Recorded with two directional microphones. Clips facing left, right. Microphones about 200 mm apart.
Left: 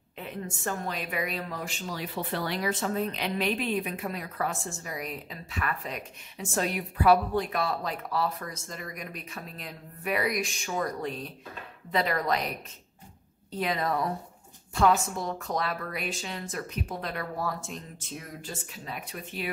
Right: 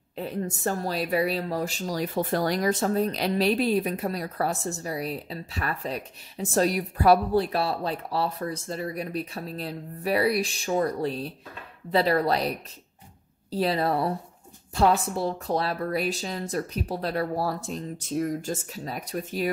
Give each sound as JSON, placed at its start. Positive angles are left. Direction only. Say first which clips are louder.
{"t": 0.2, "sound": "speech", "louder": "right 6 dB", "side_deg": -35}